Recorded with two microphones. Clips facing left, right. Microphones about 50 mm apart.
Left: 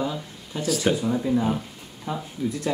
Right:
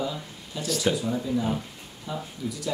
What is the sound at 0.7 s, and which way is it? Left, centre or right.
Speech, centre.